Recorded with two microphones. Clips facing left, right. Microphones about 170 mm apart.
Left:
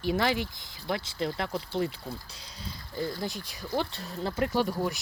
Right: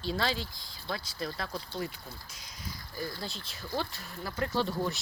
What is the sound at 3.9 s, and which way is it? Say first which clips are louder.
Speech: left 6 dB; 30° left (ahead or behind).